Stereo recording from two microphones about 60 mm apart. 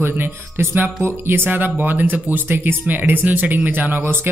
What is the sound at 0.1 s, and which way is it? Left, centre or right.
Speech, right.